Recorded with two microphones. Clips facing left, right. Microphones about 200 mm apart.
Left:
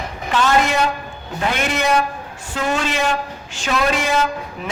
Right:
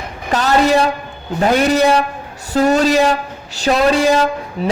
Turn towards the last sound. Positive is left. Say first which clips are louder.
# right 5 dB
turn(degrees=-35)  # may be behind; listen again after turning